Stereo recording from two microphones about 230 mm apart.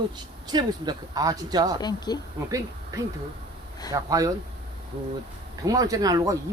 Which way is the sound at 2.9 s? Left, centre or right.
Centre.